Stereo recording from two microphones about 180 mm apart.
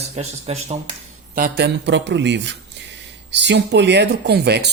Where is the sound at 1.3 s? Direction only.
60° right (ahead or behind).